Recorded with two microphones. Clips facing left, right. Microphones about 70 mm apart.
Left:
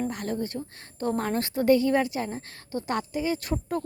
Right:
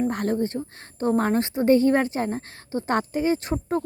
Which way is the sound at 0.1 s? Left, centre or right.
Right.